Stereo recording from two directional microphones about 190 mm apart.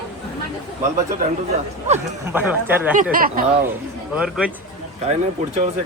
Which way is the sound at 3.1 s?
50° right (ahead or behind).